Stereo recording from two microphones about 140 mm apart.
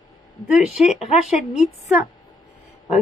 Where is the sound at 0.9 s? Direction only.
50° left (ahead or behind).